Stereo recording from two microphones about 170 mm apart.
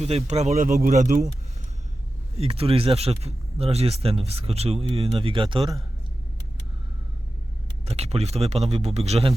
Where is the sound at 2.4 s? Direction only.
35° right (ahead or behind).